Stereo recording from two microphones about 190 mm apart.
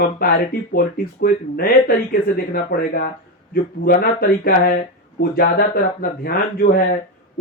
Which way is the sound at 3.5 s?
50° left (ahead or behind).